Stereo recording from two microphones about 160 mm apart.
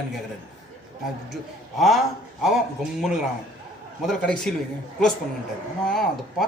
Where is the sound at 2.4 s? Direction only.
Centre (ahead or behind).